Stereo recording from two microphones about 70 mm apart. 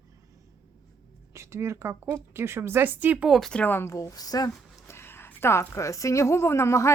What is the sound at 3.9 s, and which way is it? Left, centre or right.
Speech, left.